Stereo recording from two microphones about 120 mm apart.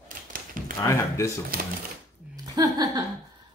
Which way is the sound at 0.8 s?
25° left (ahead or behind).